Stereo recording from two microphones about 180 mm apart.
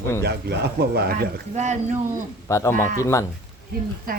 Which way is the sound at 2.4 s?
15° left (ahead or behind).